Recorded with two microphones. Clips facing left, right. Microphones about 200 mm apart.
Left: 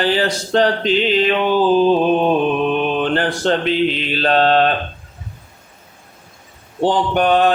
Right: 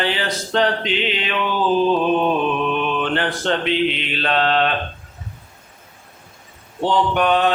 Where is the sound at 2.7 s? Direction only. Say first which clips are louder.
Left 4 dB; 35° left (ahead or behind).